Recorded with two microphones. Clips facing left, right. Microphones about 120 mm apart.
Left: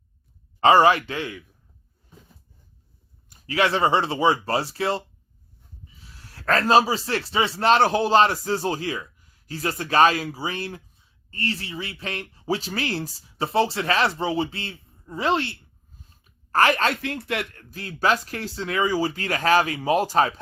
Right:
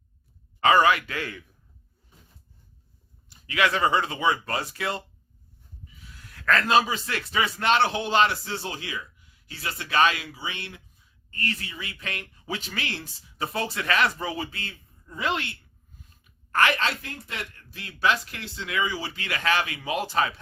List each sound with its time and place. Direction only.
0.6 s speech: 30° left (ahead or behind)
3.2 s a man's voice: 35° left (ahead or behind); by 17.7 s 50° left (ahead or behind)
17.7 s speech: 40° left (ahead or behind)